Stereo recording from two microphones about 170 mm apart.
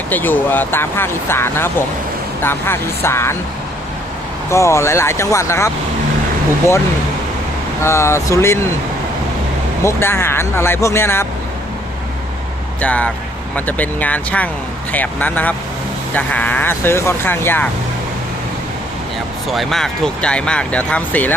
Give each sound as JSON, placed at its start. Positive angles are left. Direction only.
{"t": 0.1, "sound": "speech", "side_deg": 10}
{"t": 4.4, "sound": "speech", "side_deg": 15}
{"t": 7.8, "sound": "speech", "side_deg": 15}
{"t": 9.8, "sound": "speech", "side_deg": 15}
{"t": 12.8, "sound": "speech", "side_deg": 10}
{"t": 19.5, "sound": "speech", "side_deg": 0}